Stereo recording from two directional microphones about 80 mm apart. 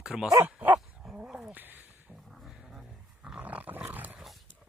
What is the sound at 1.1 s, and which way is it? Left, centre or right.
Dog, centre.